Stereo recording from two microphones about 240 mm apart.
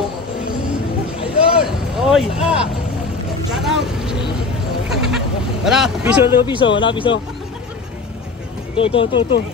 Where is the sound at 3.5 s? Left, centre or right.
Centre.